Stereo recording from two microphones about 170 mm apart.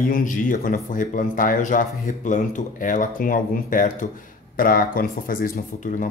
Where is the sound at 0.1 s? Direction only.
50° left (ahead or behind).